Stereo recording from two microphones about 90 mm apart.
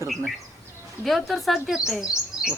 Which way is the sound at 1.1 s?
Centre (ahead or behind).